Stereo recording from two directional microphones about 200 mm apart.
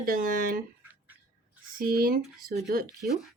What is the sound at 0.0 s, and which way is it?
Speech, 45° right (ahead or behind).